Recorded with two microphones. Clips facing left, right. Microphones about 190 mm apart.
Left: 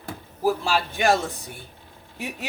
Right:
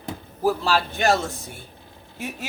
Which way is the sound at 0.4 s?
10° left (ahead or behind).